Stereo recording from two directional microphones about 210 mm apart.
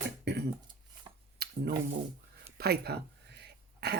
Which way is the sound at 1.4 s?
45° right (ahead or behind).